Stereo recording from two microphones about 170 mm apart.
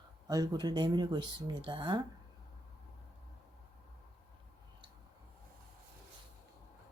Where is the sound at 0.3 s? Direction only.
20° right (ahead or behind).